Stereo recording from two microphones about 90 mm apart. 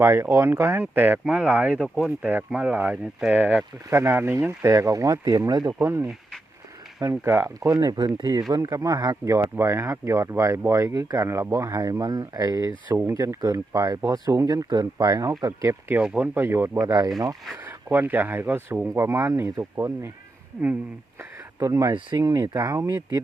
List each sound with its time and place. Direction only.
0.0 s speech: 30° right (ahead or behind)
1.2 s speech: 10° right (ahead or behind)
3.8 s speech: 30° right (ahead or behind); by 5.7 s 45° right (ahead or behind)
5.8 s speech: 30° right (ahead or behind)
7.7 s speech: 45° right (ahead or behind)
9.2 s speech: 35° right (ahead or behind)
12.9 s speech: 25° right (ahead or behind)
13.1 s speech: 40° right (ahead or behind)
16.0 s speech: 15° right (ahead or behind)
16.8 s speech: 45° right (ahead or behind)
17.6 s speech: 20° right (ahead or behind)
21.2 s a sound: 40° right (ahead or behind)
22.2 s speech: 45° right (ahead or behind)